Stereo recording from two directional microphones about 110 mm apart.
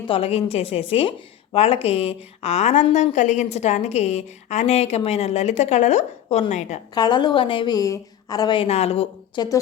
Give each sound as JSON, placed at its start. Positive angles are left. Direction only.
{"t": 0.1, "sound": "a woman's voice", "side_deg": 65}
{"t": 6.9, "sound": "a woman's voice", "side_deg": 40}
{"t": 7.8, "sound": "a woman's voice", "side_deg": 35}
{"t": 8.5, "sound": "a woman's voice", "side_deg": 70}
{"t": 9.3, "sound": "a woman's voice", "side_deg": 40}